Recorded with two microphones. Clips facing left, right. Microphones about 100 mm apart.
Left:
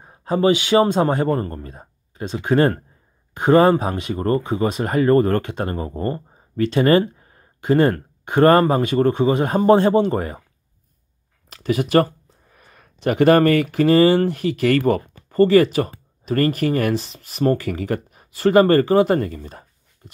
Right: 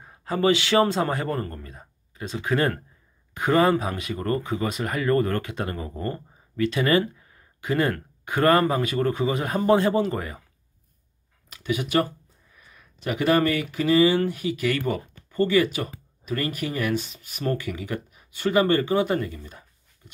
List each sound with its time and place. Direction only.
0.0 s a man's voice: 25° left (ahead or behind)
11.5 s speech: 40° left (ahead or behind)
17.0 s speech: 35° left (ahead or behind)